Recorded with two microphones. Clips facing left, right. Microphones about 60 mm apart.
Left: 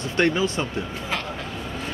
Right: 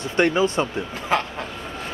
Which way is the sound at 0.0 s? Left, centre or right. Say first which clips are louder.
Right 2 dB; right.